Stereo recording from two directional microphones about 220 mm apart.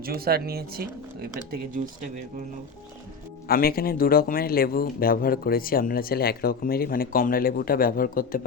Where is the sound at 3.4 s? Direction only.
45° left (ahead or behind).